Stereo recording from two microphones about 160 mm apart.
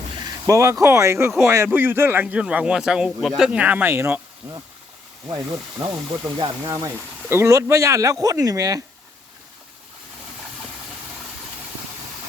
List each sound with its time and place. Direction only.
0.4 s speech: 20° right (ahead or behind)
5.8 s speech: 25° right (ahead or behind)